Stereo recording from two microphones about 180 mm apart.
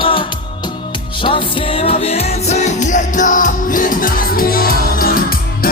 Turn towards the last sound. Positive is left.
turn(degrees=55)  # may be behind; listen again after turning